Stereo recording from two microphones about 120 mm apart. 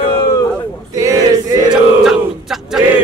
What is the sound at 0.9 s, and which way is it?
Male singing, 30° right (ahead or behind).